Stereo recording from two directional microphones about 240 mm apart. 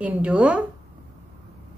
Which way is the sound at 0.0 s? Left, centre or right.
Centre.